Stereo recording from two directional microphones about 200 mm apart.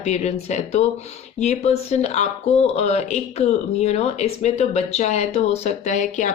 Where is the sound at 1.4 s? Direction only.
30° left (ahead or behind).